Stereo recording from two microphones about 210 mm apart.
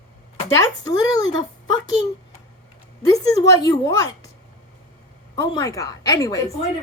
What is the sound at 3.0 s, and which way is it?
A woman's voice, 15° left (ahead or behind).